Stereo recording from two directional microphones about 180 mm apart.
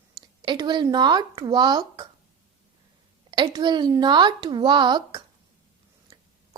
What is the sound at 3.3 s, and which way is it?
A woman's voice, 25° right (ahead or behind).